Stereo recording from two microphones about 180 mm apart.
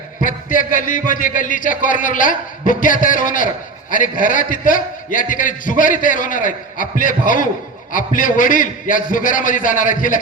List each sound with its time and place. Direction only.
0.2 s a man's voice: 50° left (ahead or behind)